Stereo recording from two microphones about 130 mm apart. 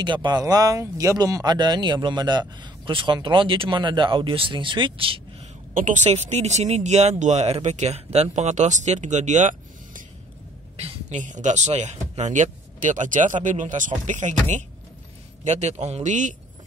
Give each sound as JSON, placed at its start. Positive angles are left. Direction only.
{"t": 0.0, "sound": "speech", "side_deg": -35}
{"t": 6.0, "sound": "speech", "side_deg": -55}